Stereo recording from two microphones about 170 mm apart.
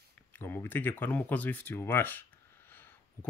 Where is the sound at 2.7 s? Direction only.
10° left (ahead or behind).